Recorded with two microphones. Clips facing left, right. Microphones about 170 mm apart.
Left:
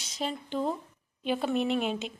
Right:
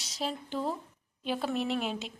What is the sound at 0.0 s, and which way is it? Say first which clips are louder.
A woman's voice: left 1 dB; centre (ahead or behind).